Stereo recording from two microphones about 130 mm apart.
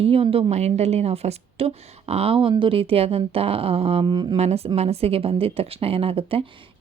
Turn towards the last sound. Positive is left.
turn(degrees=-45)  # may be behind; listen again after turning